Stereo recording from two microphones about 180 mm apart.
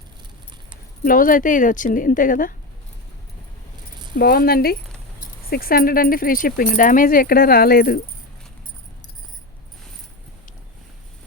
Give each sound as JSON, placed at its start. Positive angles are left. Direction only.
{"t": 1.0, "sound": "speech", "side_deg": 50}
{"t": 4.1, "sound": "speech", "side_deg": 60}